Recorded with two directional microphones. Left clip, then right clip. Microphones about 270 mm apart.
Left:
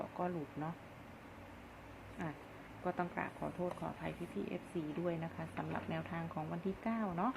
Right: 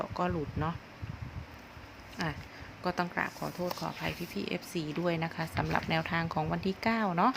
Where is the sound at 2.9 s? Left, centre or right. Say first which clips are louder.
Right 7 dB; right.